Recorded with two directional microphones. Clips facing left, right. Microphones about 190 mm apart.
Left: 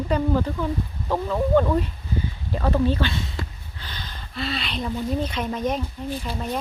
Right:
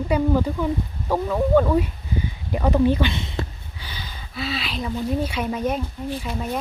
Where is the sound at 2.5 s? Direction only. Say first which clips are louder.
Right 3 dB; 15° right (ahead or behind).